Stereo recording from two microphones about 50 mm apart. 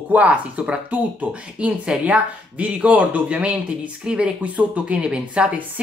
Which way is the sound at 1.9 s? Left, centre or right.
Centre.